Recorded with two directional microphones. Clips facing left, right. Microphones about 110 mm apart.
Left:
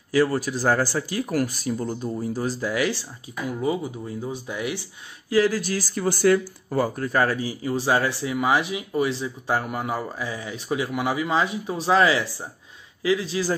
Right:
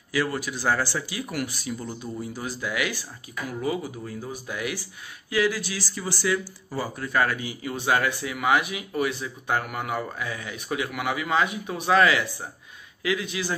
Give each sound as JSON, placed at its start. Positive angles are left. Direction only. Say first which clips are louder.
{"t": 0.1, "sound": "speech", "louder": "left 6 dB", "side_deg": 35}
{"t": 5.3, "sound": "speech", "louder": "left 4 dB", "side_deg": 40}